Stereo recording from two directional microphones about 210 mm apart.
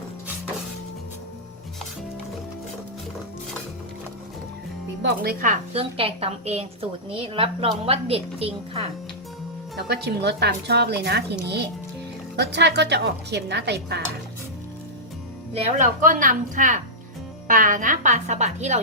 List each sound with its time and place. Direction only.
5.0 s speech: 45° right (ahead or behind)
5.7 s a woman's voice: 30° right (ahead or behind)
9.9 s speech: 55° right (ahead or behind)
15.8 s a woman's voice: 40° right (ahead or behind)